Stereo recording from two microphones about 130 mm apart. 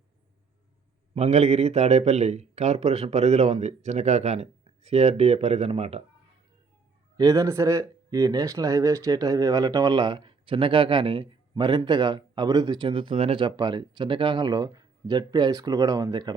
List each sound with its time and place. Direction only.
1.1 s a man's voice: 55° right (ahead or behind)
7.2 s speech: 25° right (ahead or behind); by 13.4 s 45° right (ahead or behind)
13.4 s speech: 35° right (ahead or behind)